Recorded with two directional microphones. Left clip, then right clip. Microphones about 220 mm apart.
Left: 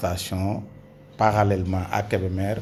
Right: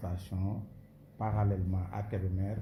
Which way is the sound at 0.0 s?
45° left (ahead or behind).